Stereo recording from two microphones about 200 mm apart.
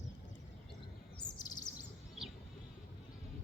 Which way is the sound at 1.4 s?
20° left (ahead or behind).